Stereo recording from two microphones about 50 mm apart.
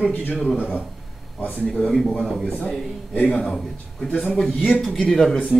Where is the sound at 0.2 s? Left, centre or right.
Left.